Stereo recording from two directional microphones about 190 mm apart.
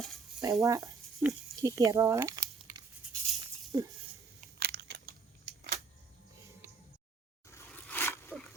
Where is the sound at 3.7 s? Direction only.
20° right (ahead or behind).